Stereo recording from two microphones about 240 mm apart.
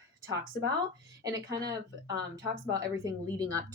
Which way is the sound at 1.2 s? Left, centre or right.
Centre.